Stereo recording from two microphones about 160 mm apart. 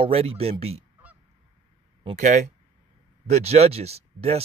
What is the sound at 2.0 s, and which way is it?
Speech, 45° right (ahead or behind).